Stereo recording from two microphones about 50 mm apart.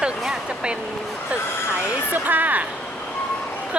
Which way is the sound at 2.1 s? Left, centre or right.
Right.